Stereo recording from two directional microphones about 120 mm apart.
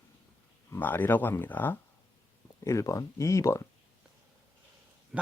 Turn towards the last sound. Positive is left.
turn(degrees=25)  # may be behind; listen again after turning